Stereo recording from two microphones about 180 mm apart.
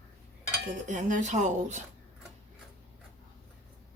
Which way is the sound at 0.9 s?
45° right (ahead or behind).